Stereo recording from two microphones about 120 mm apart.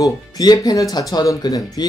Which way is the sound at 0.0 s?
30° left (ahead or behind).